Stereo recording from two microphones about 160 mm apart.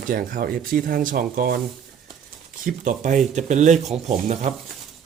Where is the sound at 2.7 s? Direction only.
55° right (ahead or behind).